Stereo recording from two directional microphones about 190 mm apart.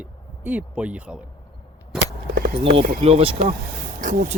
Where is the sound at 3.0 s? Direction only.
30° right (ahead or behind).